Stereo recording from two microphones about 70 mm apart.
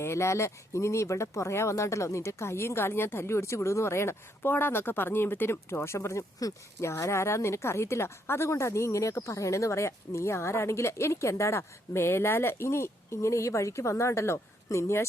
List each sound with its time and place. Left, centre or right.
0.0 s speech: left